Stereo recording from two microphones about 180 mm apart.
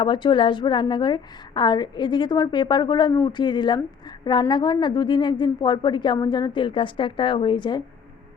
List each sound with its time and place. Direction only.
0.0 s a woman's voice: 25° left (ahead or behind)